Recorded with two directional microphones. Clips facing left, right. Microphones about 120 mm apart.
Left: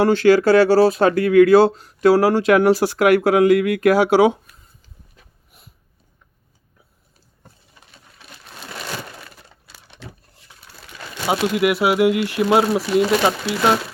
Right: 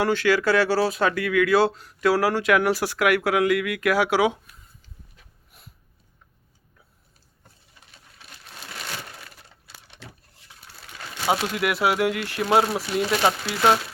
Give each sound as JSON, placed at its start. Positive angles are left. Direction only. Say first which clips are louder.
{"t": 0.0, "sound": "speech", "louder": "left 7 dB", "side_deg": 30}
{"t": 11.3, "sound": "speech", "louder": "left 5 dB", "side_deg": 15}
{"t": 12.9, "sound": "speech", "louder": "left 7 dB", "side_deg": 90}